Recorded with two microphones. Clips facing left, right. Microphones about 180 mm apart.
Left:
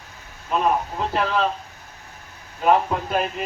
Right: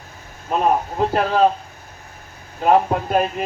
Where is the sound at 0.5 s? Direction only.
45° right (ahead or behind).